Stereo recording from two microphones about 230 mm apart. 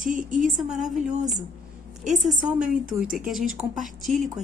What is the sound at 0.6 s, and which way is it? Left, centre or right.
Speech, centre.